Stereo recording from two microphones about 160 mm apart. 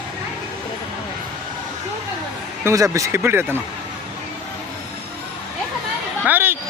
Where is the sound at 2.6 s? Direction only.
20° right (ahead or behind).